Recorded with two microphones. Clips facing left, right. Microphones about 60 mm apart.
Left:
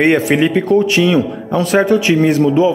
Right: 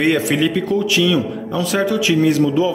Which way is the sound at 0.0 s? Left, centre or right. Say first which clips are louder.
Left 4 dB; left.